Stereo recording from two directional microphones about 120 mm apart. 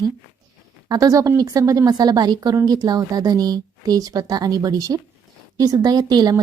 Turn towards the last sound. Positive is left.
turn(degrees=-35)  # may be behind; listen again after turning